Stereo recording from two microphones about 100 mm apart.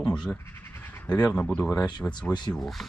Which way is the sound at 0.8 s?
15° left (ahead or behind).